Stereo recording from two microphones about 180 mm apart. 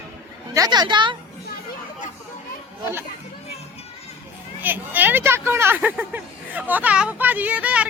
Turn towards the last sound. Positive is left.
turn(degrees=-5)  # may be behind; listen again after turning